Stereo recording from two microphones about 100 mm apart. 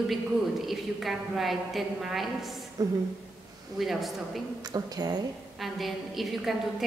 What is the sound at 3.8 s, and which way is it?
Speech, centre (ahead or behind).